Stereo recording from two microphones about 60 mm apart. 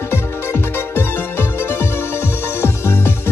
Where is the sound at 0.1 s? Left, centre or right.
Left.